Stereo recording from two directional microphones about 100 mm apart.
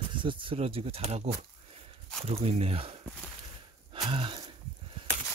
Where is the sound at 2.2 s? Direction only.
80° right.